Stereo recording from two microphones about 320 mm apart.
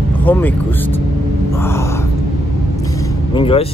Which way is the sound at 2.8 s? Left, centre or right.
Centre.